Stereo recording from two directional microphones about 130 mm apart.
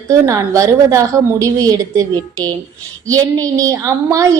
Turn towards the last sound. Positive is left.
turn(degrees=-25)  # may be behind; listen again after turning